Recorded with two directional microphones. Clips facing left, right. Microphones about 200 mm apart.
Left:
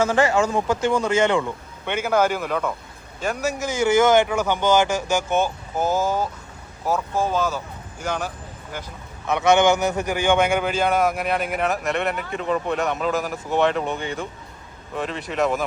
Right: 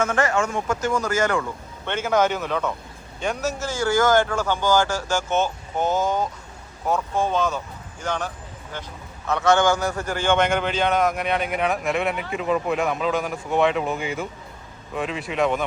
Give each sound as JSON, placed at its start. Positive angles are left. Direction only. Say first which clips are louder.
{"t": 0.0, "sound": "speech", "louder": "left 3 dB", "side_deg": 30}
{"t": 1.8, "sound": "a man's voice", "louder": "left 1 dB", "side_deg": 10}
{"t": 3.6, "sound": "a man's voice", "louder": "left 4 dB", "side_deg": 20}